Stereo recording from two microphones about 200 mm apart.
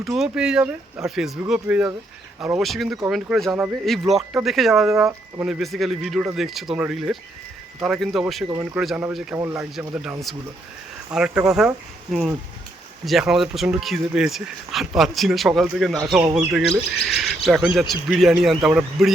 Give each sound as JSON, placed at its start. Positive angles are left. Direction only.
{"t": 0.0, "sound": "speech", "side_deg": 0}
{"t": 8.4, "sound": "speech", "side_deg": -15}
{"t": 8.8, "sound": "speech", "side_deg": 0}
{"t": 9.3, "sound": "speech", "side_deg": -15}
{"t": 13.1, "sound": "speech", "side_deg": 0}